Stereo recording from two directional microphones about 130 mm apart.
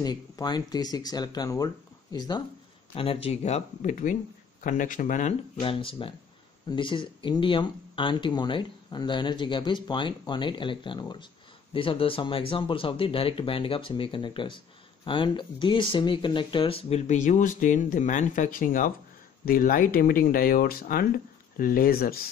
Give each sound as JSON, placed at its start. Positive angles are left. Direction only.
{"t": 0.0, "sound": "speech", "side_deg": 30}
{"t": 2.9, "sound": "speech", "side_deg": 45}
{"t": 4.6, "sound": "speech", "side_deg": 90}
{"t": 5.6, "sound": "speech", "side_deg": 40}
{"t": 17.1, "sound": "speech", "side_deg": 70}